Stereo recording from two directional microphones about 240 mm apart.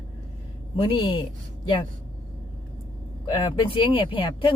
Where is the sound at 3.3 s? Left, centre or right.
Centre.